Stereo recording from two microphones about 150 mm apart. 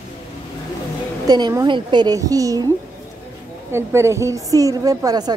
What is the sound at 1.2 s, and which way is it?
A woman's voice, 30° right (ahead or behind).